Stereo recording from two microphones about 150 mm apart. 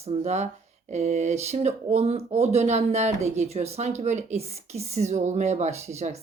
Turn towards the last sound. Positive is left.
turn(degrees=-45)  # may be behind; listen again after turning